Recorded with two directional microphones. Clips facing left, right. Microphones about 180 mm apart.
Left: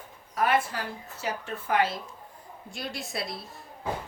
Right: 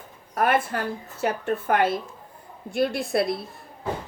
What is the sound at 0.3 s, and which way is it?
A woman's voice, 55° right (ahead or behind).